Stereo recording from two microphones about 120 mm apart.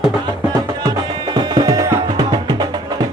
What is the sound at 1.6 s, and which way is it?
Music, 30° right (ahead or behind).